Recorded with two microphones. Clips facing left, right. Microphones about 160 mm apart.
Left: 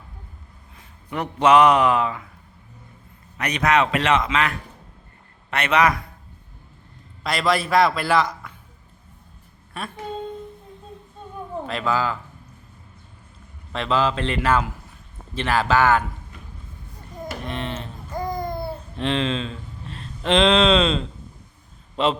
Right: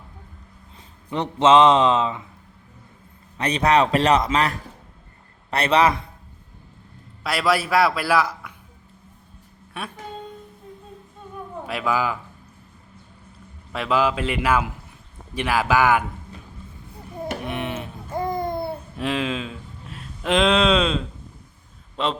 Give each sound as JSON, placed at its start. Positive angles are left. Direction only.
{"t": 1.1, "sound": "speech", "side_deg": -25}
{"t": 3.3, "sound": "a man's voice", "side_deg": -30}
{"t": 7.3, "sound": "a man's voice", "side_deg": -5}
{"t": 11.6, "sound": "speech", "side_deg": -10}
{"t": 13.7, "sound": "a man's voice", "side_deg": -10}
{"t": 17.4, "sound": "a sound", "side_deg": -10}
{"t": 18.1, "sound": "babbling", "side_deg": -25}
{"t": 18.9, "sound": "speech", "side_deg": -5}
{"t": 21.9, "sound": "a man's voice", "side_deg": 5}